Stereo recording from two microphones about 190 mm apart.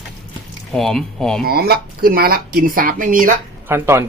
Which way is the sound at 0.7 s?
Centre (ahead or behind).